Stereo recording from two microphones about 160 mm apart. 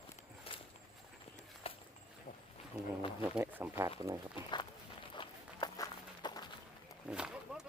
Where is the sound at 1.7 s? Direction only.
35° left (ahead or behind).